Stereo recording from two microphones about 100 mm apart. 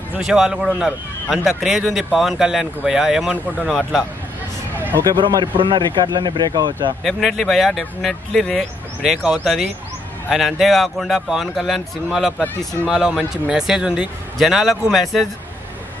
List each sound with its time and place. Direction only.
0.2 s a man's voice: 5° right (ahead or behind)
5.0 s speech: 55° right (ahead or behind)
7.0 s a man's voice: centre (ahead or behind)